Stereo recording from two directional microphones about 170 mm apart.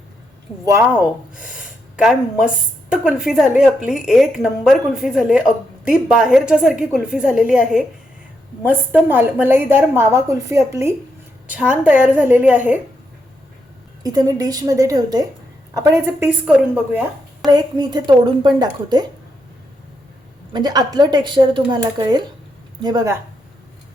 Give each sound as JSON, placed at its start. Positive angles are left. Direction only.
{"t": 0.6, "sound": "a woman's voice", "side_deg": -15}
{"t": 14.0, "sound": "a woman's voice", "side_deg": -20}
{"t": 16.2, "sound": "a woman's voice", "side_deg": -5}
{"t": 17.5, "sound": "a woman's voice", "side_deg": -25}
{"t": 20.5, "sound": "a woman's voice", "side_deg": -25}